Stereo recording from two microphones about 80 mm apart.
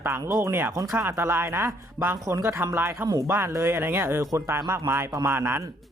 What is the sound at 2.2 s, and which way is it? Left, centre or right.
Speech, right.